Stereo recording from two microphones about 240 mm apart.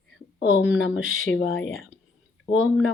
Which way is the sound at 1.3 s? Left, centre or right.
Left.